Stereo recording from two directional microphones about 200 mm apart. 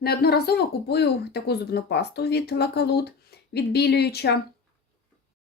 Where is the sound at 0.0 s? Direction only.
50° left (ahead or behind).